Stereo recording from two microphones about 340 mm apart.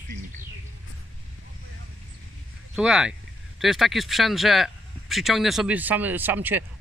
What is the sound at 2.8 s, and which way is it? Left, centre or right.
Speech, centre.